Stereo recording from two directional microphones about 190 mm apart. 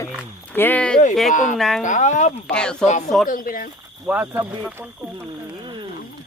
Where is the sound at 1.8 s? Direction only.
40° left (ahead or behind).